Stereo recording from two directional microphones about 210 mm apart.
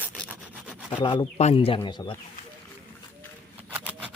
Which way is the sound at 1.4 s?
30° left (ahead or behind).